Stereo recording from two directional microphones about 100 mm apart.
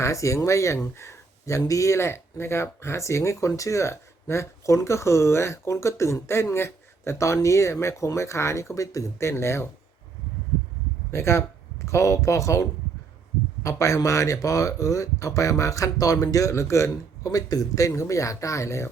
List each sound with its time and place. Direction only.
0.0 s speech: 30° left (ahead or behind)
11.1 s speech: 25° left (ahead or behind)